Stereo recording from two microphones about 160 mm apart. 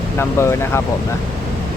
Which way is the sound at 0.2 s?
15° left (ahead or behind).